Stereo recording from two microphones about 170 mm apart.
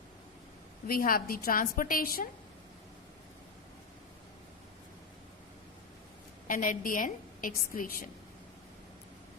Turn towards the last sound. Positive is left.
turn(degrees=55)  # may be behind; listen again after turning